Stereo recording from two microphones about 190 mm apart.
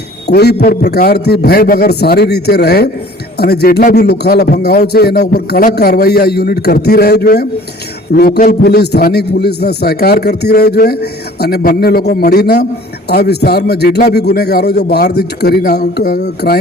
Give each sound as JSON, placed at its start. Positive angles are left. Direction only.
{"t": 0.3, "sound": "a man's voice", "side_deg": 60}